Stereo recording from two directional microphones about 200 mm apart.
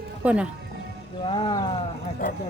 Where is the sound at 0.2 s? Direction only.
5° right (ahead or behind).